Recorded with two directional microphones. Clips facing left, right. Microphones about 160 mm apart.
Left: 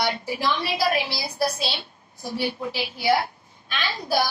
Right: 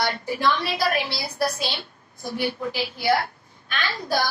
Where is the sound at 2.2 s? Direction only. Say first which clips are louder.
Right 1 dB; 20° left (ahead or behind).